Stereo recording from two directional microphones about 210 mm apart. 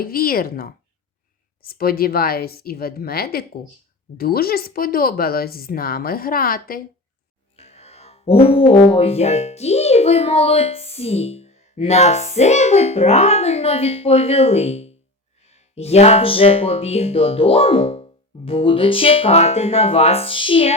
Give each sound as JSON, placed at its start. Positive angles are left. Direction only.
{"t": 0.0, "sound": "speech", "side_deg": 45}
{"t": 7.5, "sound": "music", "side_deg": 30}